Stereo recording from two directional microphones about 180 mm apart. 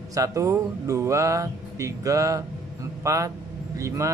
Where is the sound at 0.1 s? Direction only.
15° right (ahead or behind).